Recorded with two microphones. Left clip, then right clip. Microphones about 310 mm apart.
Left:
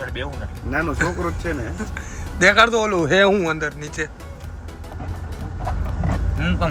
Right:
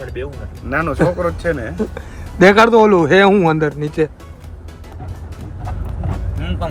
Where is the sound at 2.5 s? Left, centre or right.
Centre.